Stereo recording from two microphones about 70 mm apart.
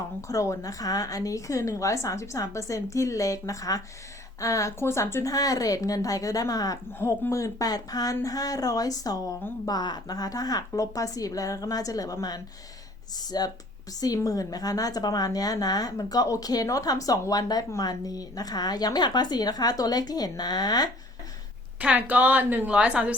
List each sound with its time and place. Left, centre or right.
0.2 s a woman's voice: left
4.8 s speech: left
5.2 s speech: left
7.3 s speech: left
9.6 s a woman's voice: left
21.8 s a woman's voice: right